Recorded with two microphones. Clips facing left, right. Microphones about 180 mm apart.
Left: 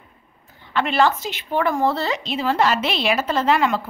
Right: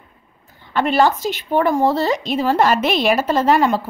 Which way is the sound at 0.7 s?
40° right (ahead or behind).